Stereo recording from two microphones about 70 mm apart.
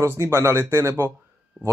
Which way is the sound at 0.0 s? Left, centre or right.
Right.